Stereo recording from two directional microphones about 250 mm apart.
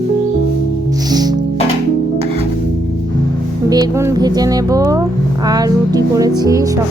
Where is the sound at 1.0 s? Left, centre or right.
Centre.